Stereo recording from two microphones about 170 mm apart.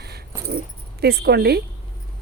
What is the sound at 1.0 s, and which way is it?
Speech, 75° right (ahead or behind).